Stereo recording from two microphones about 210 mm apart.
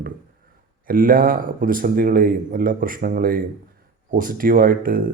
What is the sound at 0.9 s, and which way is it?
Speech, 40° right (ahead or behind).